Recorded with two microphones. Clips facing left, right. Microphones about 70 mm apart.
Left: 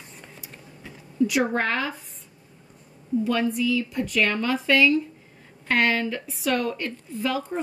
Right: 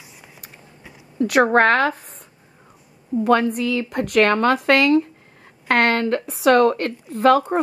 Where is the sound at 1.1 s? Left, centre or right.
Right.